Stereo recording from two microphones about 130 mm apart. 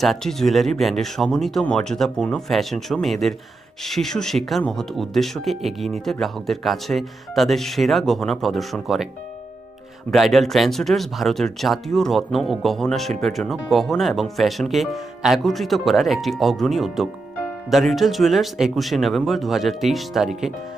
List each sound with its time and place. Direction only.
0.0 s speech: centre (ahead or behind)
10.1 s speech: centre (ahead or behind)